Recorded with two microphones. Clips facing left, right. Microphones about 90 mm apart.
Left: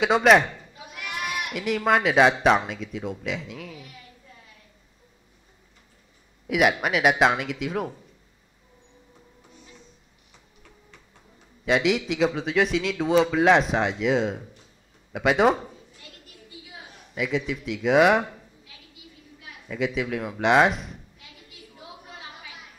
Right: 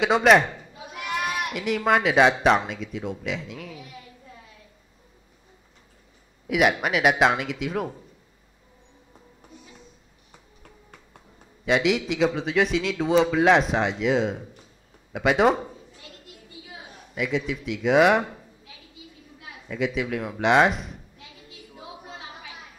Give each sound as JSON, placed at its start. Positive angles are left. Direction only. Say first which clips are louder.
{"t": 0.0, "sound": "a man's voice", "louder": "even", "side_deg": 0}
{"t": 0.7, "sound": "a sound", "louder": "right 5 dB", "side_deg": -30}
{"t": 1.5, "sound": "a man's voice", "louder": "left 1 dB", "side_deg": 0}
{"t": 6.4, "sound": "a man's voice", "louder": "even", "side_deg": 0}
{"t": 11.6, "sound": "a man's voice", "louder": "even", "side_deg": 0}
{"t": 17.1, "sound": "a man's voice", "louder": "even", "side_deg": 0}
{"t": 19.7, "sound": "a man's voice", "louder": "even", "side_deg": 0}
{"t": 21.5, "sound": "a sound", "louder": "right 3 dB", "side_deg": -25}